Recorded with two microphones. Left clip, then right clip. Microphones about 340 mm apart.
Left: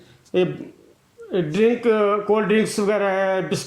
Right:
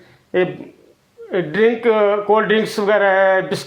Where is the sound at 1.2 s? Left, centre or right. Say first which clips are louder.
Right 3 dB; right.